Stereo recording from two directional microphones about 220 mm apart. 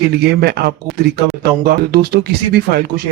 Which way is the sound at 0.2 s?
45° right (ahead or behind).